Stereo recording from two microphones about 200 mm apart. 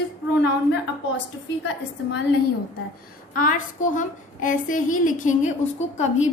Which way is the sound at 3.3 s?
40° left (ahead or behind).